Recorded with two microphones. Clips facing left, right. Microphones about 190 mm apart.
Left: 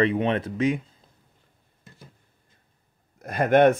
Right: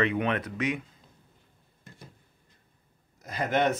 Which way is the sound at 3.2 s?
55° left (ahead or behind).